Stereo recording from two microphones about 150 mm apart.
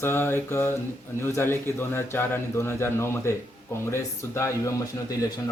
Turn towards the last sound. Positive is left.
turn(degrees=25)  # may be behind; listen again after turning